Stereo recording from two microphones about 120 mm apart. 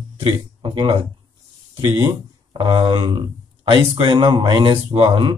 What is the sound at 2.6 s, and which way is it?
Speech, 40° right (ahead or behind).